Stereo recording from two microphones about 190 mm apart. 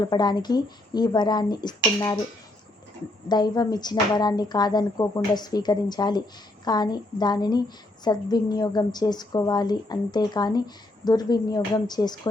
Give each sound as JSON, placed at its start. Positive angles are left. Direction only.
{"t": 0.0, "sound": "speech", "side_deg": 20}
{"t": 3.2, "sound": "speech", "side_deg": 20}